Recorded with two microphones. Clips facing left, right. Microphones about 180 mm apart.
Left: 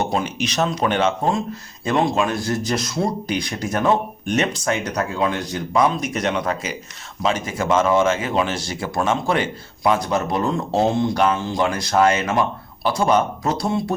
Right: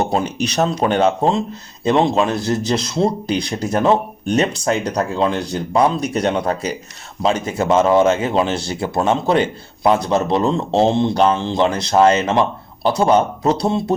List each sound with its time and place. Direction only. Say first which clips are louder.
0.1 s speech: right 3 dB; 35° right (ahead or behind)
1.8 s speech: right 4 dB; 25° right (ahead or behind)